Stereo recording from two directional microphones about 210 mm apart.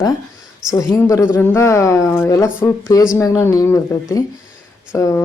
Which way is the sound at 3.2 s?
15° left (ahead or behind).